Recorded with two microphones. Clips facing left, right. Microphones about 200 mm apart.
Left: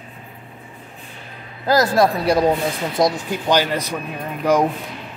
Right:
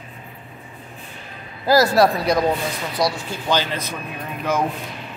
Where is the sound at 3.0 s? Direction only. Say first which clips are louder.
Left 4 dB; 20° left (ahead or behind).